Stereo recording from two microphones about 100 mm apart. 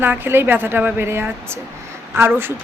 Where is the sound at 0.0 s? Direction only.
20° right (ahead or behind).